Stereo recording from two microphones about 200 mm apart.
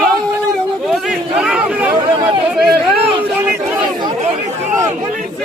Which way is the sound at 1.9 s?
20° right (ahead or behind).